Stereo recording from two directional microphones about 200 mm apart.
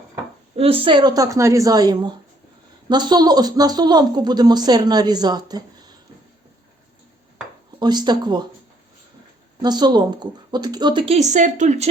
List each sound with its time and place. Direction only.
0.5 s speech: 30° right (ahead or behind)
7.8 s speech: 20° right (ahead or behind)
9.6 s speech: 20° right (ahead or behind); by 11.9 s 35° right (ahead or behind)